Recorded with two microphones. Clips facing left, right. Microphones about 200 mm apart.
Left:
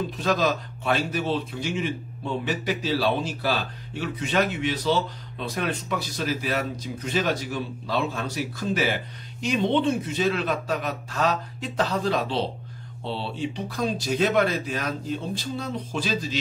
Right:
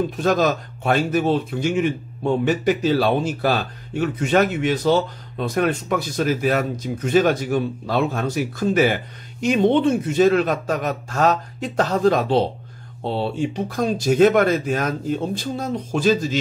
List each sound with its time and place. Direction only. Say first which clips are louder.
0.2 s speech: right 4 dB; 50° right (ahead or behind)